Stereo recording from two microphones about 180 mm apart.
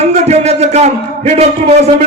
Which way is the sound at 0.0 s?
35° right (ahead or behind).